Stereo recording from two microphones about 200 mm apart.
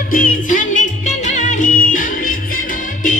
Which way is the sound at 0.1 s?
40° left (ahead or behind).